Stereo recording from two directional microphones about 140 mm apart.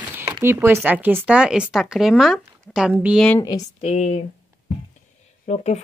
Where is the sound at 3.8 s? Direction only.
50° left (ahead or behind).